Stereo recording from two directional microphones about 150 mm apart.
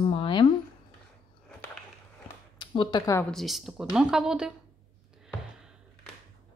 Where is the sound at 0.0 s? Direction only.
35° left (ahead or behind).